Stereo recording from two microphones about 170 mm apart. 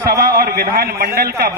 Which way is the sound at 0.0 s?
60° right (ahead or behind).